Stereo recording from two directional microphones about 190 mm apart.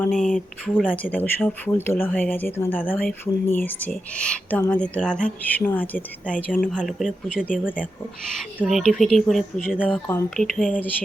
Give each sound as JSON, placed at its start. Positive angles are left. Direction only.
{"t": 0.0, "sound": "speech", "side_deg": 5}
{"t": 8.5, "sound": "speech", "side_deg": 0}
{"t": 10.1, "sound": "speech", "side_deg": 5}